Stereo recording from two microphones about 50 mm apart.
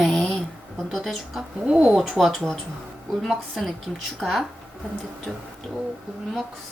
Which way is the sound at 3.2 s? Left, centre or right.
Centre.